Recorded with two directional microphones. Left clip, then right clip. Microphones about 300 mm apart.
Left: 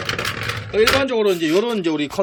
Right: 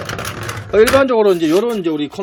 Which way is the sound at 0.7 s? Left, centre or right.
Centre.